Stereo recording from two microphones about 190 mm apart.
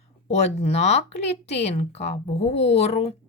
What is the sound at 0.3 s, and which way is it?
Speech, 35° left (ahead or behind).